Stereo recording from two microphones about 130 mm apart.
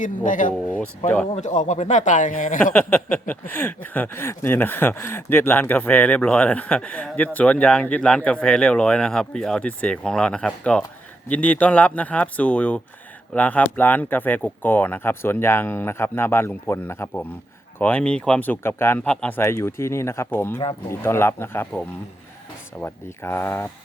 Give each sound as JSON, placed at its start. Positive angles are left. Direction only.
{"t": 0.0, "sound": "speech", "side_deg": 80}
{"t": 0.5, "sound": "speech", "side_deg": 10}
{"t": 1.3, "sound": "speech", "side_deg": 70}
{"t": 2.7, "sound": "speech", "side_deg": 10}
{"t": 19.0, "sound": "speech", "side_deg": 10}
{"t": 19.4, "sound": "speech", "side_deg": 20}